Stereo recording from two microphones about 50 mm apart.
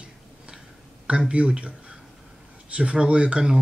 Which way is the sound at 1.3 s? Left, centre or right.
Right.